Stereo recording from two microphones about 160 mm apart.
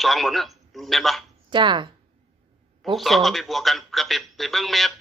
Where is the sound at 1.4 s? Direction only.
30° right (ahead or behind).